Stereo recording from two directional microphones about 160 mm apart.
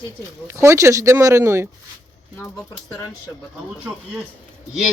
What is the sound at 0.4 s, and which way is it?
Speech, 20° right (ahead or behind).